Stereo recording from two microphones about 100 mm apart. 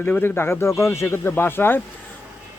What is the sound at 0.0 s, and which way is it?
Speech, 20° left (ahead or behind).